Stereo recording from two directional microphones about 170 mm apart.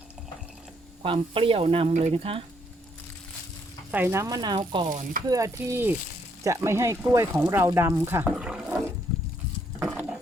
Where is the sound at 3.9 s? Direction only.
10° right (ahead or behind).